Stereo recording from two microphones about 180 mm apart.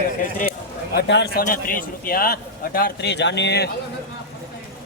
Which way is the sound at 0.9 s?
70° left (ahead or behind).